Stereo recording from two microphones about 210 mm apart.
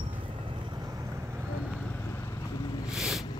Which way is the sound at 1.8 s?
10° left (ahead or behind).